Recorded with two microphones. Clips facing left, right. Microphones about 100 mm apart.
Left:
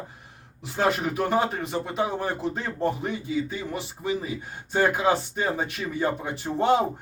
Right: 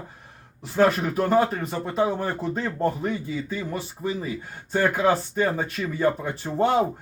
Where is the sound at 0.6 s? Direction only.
15° left (ahead or behind).